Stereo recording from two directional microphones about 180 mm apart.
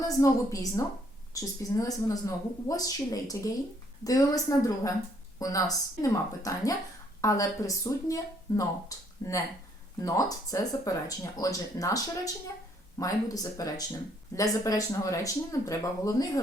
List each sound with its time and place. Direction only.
0.2 s a woman's voice: 15° left (ahead or behind)